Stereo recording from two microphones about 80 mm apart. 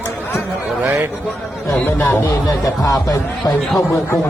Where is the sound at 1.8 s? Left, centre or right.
Left.